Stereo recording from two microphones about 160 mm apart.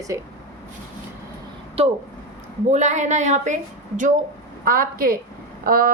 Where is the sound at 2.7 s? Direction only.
50° right (ahead or behind).